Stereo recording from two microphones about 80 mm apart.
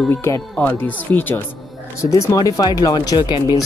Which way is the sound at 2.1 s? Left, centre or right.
Left.